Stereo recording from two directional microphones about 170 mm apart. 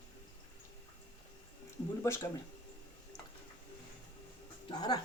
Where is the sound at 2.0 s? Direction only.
15° left (ahead or behind).